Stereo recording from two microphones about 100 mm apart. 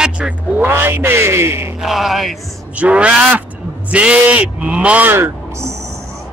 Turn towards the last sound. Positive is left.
turn(degrees=-25)  # may be behind; listen again after turning